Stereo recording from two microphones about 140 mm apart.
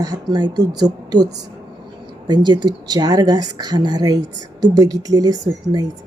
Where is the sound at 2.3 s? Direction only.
30° right (ahead or behind).